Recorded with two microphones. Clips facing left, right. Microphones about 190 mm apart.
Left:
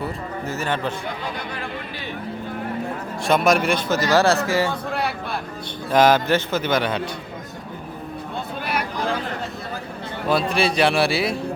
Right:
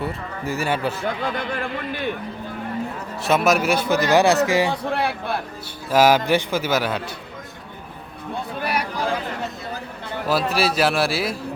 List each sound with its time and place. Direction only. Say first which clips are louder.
0.4 s a man's voice: right 2 dB; 10° right (ahead or behind)
1.4 s speech: right 4 dB; 55° right (ahead or behind)
3.2 s a man's voice: even; 5° right (ahead or behind)
5.9 s a man's voice: even; 10° right (ahead or behind)
10.2 s speech: left 1 dB; 5° right (ahead or behind)